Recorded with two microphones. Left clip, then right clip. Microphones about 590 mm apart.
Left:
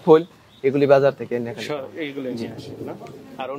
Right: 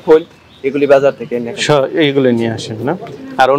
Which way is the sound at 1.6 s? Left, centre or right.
Right.